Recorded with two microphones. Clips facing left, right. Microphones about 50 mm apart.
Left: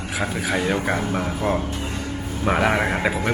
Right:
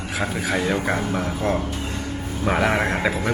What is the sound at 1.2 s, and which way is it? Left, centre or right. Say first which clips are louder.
Speech: even; centre.